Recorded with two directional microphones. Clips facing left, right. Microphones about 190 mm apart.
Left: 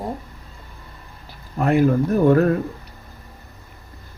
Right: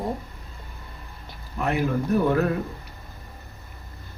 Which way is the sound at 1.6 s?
45° left (ahead or behind).